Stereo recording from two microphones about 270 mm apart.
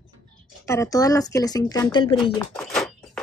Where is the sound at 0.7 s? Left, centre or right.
Centre.